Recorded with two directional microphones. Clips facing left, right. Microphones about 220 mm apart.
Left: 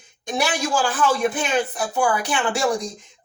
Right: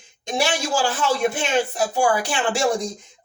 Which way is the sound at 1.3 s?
30° right (ahead or behind).